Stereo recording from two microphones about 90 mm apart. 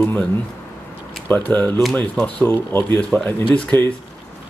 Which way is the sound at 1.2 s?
20° left (ahead or behind).